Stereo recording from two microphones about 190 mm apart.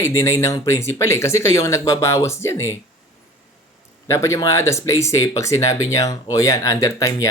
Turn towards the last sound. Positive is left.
turn(degrees=15)  # may be behind; listen again after turning